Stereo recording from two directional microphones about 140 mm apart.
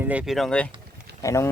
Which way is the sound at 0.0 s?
10° right (ahead or behind).